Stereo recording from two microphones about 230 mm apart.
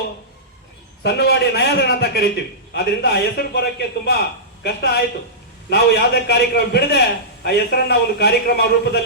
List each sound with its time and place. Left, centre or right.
1.0 s a man's voice: left